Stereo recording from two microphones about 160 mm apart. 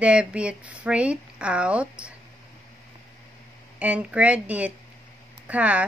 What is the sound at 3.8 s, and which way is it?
A woman's voice, 10° right (ahead or behind).